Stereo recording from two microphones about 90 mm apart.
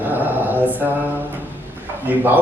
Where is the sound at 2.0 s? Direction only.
20° right (ahead or behind).